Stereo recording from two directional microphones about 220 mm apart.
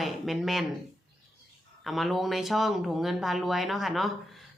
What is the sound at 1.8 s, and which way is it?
Speech, centre (ahead or behind).